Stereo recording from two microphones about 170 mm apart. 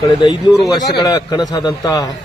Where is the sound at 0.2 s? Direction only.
30° left (ahead or behind).